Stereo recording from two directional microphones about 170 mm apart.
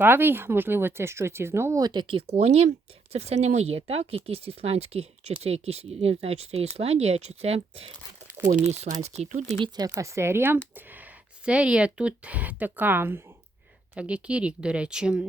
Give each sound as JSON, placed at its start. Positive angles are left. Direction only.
{"t": 0.0, "sound": "speech", "side_deg": -10}
{"t": 9.7, "sound": "speech", "side_deg": -20}